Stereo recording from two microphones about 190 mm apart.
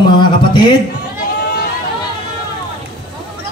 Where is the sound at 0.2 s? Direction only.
25° left (ahead or behind).